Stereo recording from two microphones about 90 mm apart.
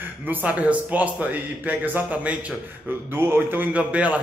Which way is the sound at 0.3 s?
15° right (ahead or behind).